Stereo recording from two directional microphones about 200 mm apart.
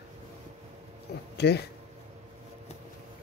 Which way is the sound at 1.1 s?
55° left (ahead or behind).